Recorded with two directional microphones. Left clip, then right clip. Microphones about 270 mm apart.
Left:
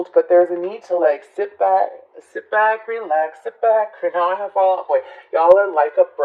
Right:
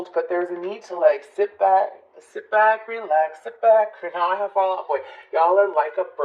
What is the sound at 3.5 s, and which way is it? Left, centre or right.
Speech, left.